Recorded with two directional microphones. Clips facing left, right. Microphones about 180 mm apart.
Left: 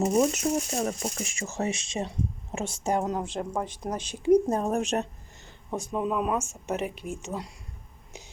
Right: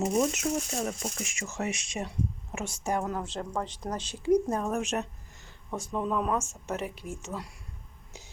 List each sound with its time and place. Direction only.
0.0 s speech: 45° left (ahead or behind)
5.7 s speech: 15° left (ahead or behind)